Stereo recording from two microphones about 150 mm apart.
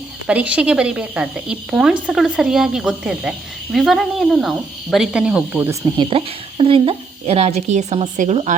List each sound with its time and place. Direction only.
0.3 s speech: 10° right (ahead or behind)
6.0 s a woman's voice: 35° right (ahead or behind)